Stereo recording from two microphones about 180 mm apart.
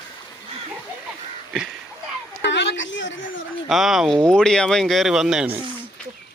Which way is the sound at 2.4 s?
80° left.